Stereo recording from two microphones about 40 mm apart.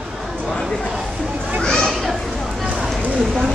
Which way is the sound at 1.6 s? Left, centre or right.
Centre.